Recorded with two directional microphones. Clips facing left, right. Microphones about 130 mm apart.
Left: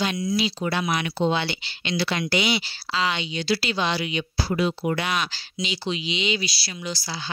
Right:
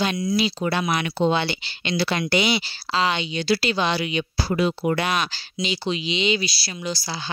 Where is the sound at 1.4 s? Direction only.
40° right (ahead or behind).